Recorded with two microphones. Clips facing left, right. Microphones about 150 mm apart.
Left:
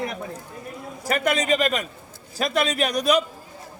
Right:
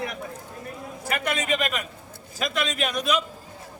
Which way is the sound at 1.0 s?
40° left (ahead or behind).